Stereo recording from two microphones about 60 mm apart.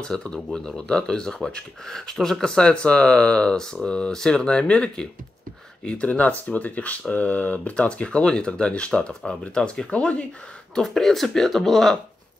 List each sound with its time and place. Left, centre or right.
0.0 s speech: centre
10.7 s speech: centre